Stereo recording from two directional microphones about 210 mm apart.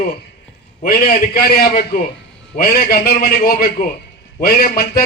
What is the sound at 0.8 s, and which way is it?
A man's voice, 45° left (ahead or behind).